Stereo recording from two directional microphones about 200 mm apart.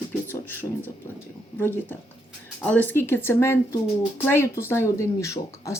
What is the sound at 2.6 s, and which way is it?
Speech, 5° left (ahead or behind).